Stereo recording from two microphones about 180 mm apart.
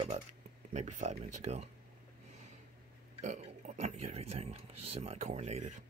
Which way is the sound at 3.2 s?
40° right (ahead or behind).